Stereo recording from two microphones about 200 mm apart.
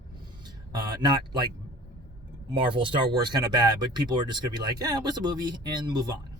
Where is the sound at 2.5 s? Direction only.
25° right (ahead or behind).